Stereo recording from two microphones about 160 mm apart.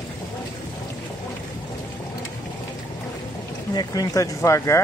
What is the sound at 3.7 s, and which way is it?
Speech, 25° left (ahead or behind).